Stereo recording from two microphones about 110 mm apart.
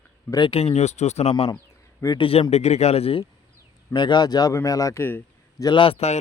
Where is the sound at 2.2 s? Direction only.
60° left (ahead or behind).